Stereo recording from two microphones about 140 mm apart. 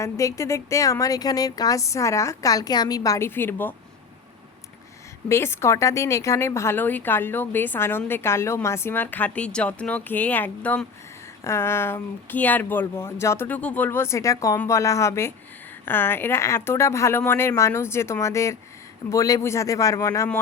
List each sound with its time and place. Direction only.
0.0 s a woman's voice: 20° left (ahead or behind)
5.3 s a woman's voice: 15° left (ahead or behind)